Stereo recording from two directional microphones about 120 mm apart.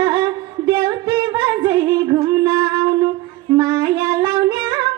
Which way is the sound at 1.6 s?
35° right (ahead or behind).